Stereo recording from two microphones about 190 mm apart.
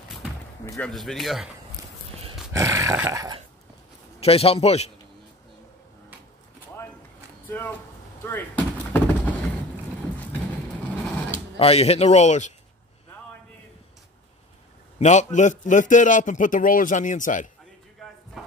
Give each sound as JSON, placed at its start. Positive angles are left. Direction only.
{"t": 0.7, "sound": "speech", "side_deg": 5}
{"t": 2.5, "sound": "dog", "side_deg": -15}
{"t": 4.2, "sound": "a man's voice", "side_deg": 30}
{"t": 7.4, "sound": "speech", "side_deg": 10}
{"t": 8.2, "sound": "a sound", "side_deg": 10}
{"t": 11.5, "sound": "a man's voice", "side_deg": 30}
{"t": 15.0, "sound": "a man's voice", "side_deg": 40}